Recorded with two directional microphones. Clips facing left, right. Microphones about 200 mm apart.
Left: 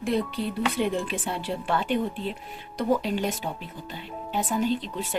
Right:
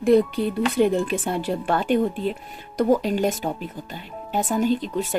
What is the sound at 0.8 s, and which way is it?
A woman's voice, 45° right (ahead or behind).